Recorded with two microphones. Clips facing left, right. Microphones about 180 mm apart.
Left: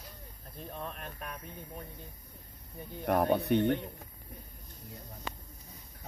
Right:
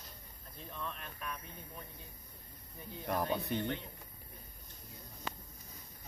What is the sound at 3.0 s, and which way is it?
Speech, 55° left (ahead or behind).